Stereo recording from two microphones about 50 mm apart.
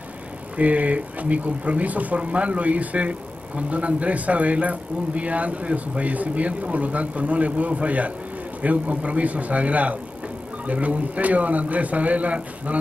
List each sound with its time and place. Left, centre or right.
0.6 s speech: right